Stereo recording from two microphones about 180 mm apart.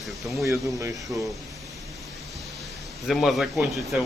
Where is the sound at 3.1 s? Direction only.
Centre (ahead or behind).